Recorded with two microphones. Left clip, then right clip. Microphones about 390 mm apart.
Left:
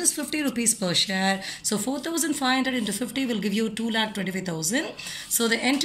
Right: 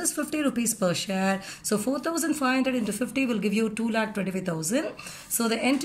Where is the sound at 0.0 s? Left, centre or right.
Right.